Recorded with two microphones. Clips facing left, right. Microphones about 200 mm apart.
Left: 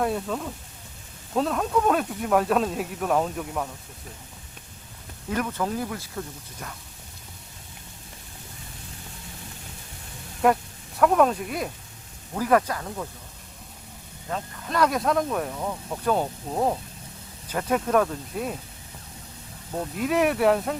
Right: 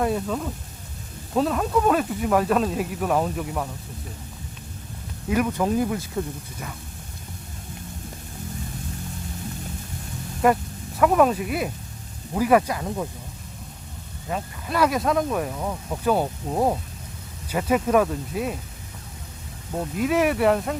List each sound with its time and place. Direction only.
0.0 s speech: centre (ahead or behind)
5.3 s speech: 15° right (ahead or behind)
10.4 s speech: centre (ahead or behind)
14.3 s speech: 10° right (ahead or behind)
20.0 s speech: centre (ahead or behind)